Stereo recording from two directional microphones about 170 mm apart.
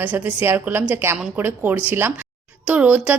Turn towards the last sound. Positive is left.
turn(degrees=-10)  # may be behind; listen again after turning